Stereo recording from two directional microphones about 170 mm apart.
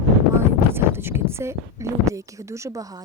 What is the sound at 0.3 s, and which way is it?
A woman's voice, 15° right (ahead or behind).